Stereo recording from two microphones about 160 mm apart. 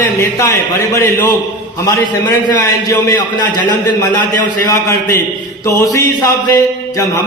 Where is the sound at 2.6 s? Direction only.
20° left (ahead or behind).